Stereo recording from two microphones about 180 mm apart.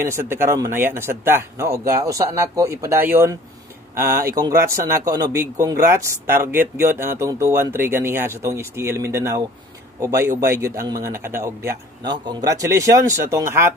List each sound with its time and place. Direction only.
0.0 s speech: 15° right (ahead or behind)